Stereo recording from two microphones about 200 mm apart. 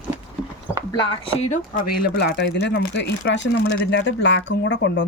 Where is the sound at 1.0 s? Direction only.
25° left (ahead or behind); by 5.1 s 60° left (ahead or behind).